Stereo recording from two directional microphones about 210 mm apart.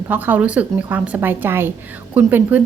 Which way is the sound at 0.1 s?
10° right (ahead or behind).